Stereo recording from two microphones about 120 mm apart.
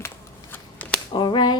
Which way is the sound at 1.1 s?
40° left (ahead or behind).